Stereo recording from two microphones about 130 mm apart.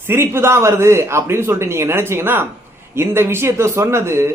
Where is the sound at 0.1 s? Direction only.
20° right (ahead or behind).